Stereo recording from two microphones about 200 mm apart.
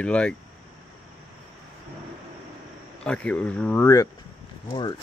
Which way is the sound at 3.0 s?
5° left (ahead or behind).